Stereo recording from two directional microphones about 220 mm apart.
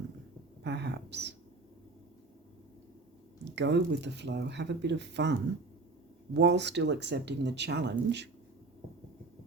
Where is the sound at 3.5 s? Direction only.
50° right (ahead or behind).